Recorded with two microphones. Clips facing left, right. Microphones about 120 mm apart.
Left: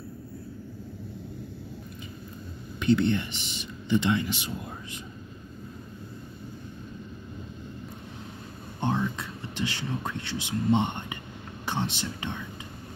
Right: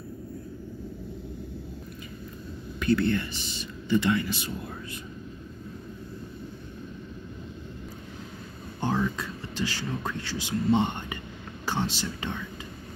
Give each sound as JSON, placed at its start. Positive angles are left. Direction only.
{"t": 2.8, "sound": "speech", "side_deg": 20}
{"t": 8.9, "sound": "speech", "side_deg": 20}